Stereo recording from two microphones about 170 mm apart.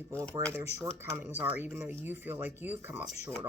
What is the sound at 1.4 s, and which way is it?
Speech, 10° right (ahead or behind).